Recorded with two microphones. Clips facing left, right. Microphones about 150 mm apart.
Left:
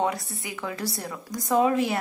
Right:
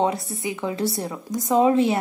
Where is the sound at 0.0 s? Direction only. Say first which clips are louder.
Right 4 dB; 20° right (ahead or behind).